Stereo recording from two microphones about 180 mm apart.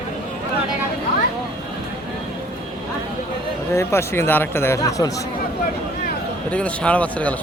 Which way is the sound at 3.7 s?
15° left (ahead or behind).